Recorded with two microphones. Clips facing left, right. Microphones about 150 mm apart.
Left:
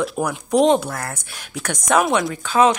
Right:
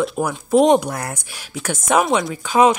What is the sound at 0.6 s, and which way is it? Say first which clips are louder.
Speech: right 2 dB; 15° right (ahead or behind).